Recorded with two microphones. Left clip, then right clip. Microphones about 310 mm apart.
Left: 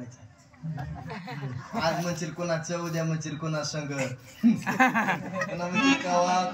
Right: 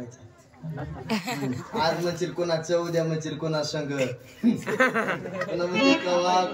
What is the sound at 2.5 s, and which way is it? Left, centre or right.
A man's voice, centre.